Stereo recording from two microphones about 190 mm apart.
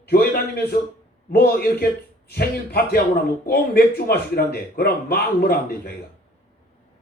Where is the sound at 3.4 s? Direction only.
55° left (ahead or behind).